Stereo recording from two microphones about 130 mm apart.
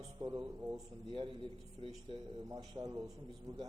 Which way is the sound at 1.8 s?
40° right (ahead or behind).